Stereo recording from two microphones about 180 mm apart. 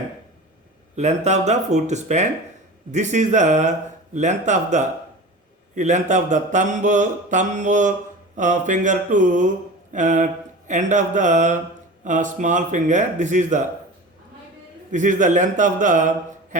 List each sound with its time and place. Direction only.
0.9 s speech: 40° right (ahead or behind)
5.7 s mantra: 40° right (ahead or behind)
14.8 s speech: 45° right (ahead or behind)